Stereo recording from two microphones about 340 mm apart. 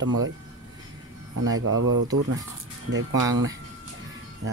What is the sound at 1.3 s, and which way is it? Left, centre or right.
Speech, right.